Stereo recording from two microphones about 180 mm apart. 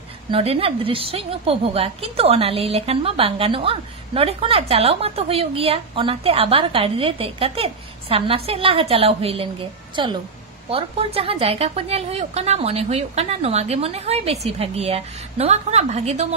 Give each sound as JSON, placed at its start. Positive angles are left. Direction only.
{"t": 0.3, "sound": "a woman's voice", "side_deg": -30}